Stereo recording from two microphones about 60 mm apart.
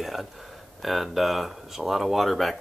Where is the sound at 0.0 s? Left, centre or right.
Centre.